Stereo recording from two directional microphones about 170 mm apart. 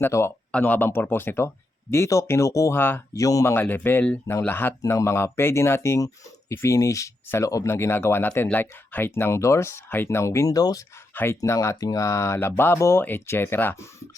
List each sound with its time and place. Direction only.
0.0 s speech: 15° left (ahead or behind)